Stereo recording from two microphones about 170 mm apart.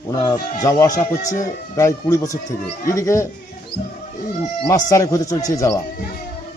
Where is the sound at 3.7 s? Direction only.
90° left.